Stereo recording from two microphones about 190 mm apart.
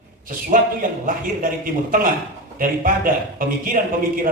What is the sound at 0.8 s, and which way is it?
Speech, 45° right (ahead or behind).